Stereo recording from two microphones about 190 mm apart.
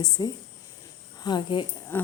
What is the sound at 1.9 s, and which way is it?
Speech, 10° left (ahead or behind).